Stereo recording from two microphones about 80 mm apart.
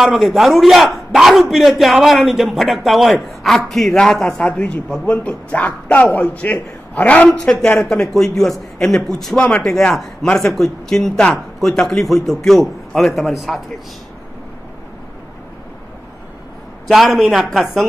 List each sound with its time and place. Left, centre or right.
0.0 s a man's voice: centre
16.8 s a man's voice: centre